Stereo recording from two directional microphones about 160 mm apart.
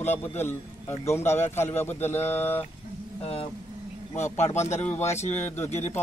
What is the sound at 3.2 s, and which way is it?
Speech, 35° left (ahead or behind).